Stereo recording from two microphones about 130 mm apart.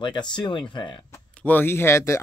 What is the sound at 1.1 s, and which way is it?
Speech, 15° left (ahead or behind).